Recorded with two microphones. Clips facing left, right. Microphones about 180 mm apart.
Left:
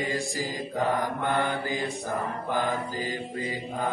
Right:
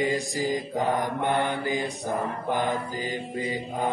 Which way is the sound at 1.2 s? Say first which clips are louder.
Right 2 dB; 20° right (ahead or behind).